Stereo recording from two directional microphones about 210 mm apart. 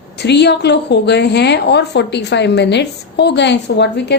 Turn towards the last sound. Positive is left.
turn(degrees=55)  # may be behind; listen again after turning